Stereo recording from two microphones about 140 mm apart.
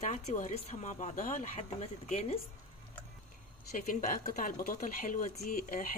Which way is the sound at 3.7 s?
85° left.